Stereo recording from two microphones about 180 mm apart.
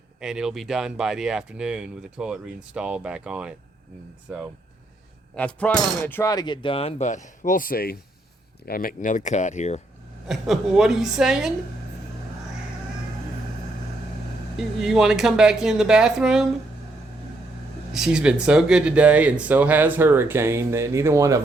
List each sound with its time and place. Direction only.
0.2 s speech: 5° right (ahead or behind)
5.4 s speech: 5° left (ahead or behind); by 9.8 s 40° left (ahead or behind)
10.2 s speech: centre (ahead or behind)
14.5 s speech: centre (ahead or behind)
17.9 s speech: 5° right (ahead or behind)